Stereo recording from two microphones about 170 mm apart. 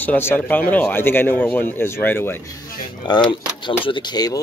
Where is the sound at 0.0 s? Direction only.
10° left (ahead or behind).